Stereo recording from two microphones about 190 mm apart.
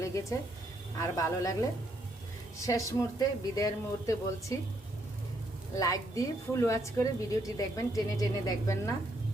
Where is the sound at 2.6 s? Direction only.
15° left (ahead or behind).